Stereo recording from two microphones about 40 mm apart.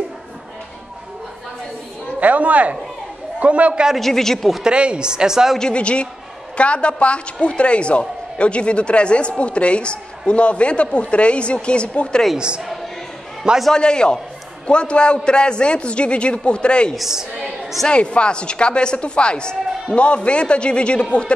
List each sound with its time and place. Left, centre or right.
2.1 s a sound: right
3.3 s a man's voice: right
4.0 s speech: centre
4.6 s a woman's voice: right
5.6 s a woman's voice: left
12.4 s a woman's voice: right
13.7 s a woman's voice: left
16.9 s a woman's voice: centre
17.8 s a woman's voice: left